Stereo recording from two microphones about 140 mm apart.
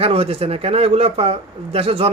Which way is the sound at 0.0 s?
45° right (ahead or behind).